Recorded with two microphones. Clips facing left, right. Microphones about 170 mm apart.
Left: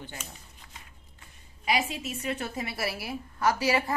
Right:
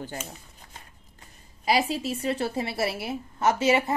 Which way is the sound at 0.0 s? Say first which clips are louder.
Right 7 dB; 40° right (ahead or behind).